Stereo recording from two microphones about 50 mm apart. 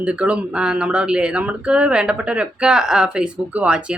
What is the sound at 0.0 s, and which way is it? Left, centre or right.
Speech, right.